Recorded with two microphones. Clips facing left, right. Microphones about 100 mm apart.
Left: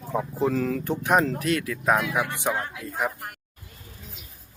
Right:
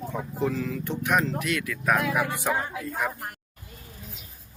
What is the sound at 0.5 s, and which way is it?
Speech, 50° left (ahead or behind).